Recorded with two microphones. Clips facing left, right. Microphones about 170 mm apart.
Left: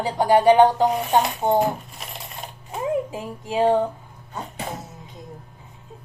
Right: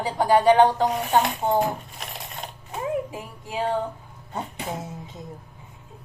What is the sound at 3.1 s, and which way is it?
Music, 25° left (ahead or behind).